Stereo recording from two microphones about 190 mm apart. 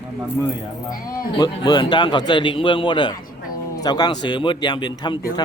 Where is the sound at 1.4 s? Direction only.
25° left (ahead or behind).